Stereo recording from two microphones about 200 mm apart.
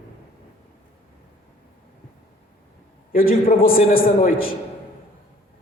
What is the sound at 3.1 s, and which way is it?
A man's voice, 45° left (ahead or behind).